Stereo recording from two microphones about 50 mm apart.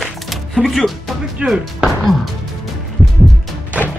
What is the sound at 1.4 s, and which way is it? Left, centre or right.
Speech, right.